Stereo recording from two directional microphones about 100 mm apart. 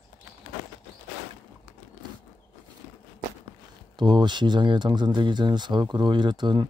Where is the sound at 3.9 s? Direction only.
50° right (ahead or behind).